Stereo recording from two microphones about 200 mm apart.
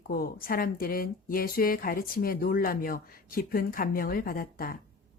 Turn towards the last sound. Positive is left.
turn(degrees=45)  # may be behind; listen again after turning